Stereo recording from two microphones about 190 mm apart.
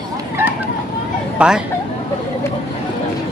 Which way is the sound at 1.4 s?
5° right (ahead or behind).